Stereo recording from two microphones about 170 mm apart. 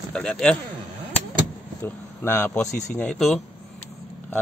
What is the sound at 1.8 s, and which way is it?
Speech, 15° left (ahead or behind).